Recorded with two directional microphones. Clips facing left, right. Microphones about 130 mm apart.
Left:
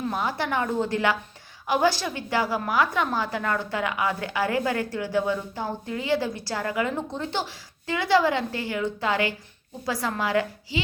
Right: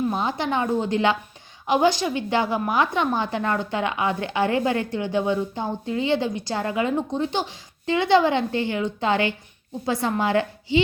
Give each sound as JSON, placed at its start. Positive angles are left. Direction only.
{"t": 0.1, "sound": "a woman's voice", "side_deg": -20}